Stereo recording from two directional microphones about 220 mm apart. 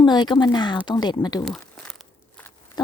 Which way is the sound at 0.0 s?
20° left (ahead or behind).